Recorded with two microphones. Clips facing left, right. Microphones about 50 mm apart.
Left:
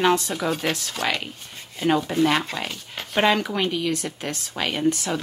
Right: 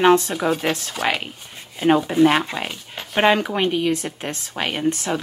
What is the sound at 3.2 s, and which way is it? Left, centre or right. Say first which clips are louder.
A woman's voice: right 3 dB; right.